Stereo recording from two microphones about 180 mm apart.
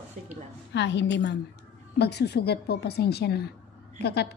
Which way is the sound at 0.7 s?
80° left.